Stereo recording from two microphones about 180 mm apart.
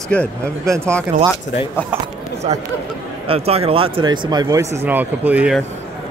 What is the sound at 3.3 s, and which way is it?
Speech, 35° right (ahead or behind).